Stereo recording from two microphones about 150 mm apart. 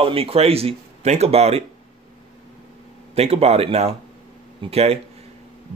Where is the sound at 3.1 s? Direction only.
45° right (ahead or behind).